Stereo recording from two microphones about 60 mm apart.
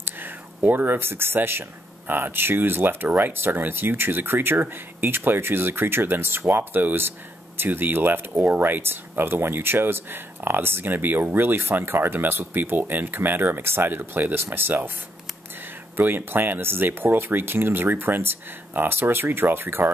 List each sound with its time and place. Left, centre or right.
0.0 s speech: right
16.0 s speech: right